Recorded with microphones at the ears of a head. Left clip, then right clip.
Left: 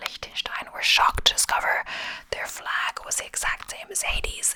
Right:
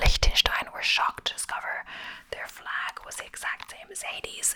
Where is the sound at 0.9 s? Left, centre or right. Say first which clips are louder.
Left 8 dB; left.